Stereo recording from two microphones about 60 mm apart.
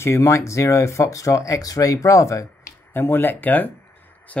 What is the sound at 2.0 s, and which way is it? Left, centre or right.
Speech, left.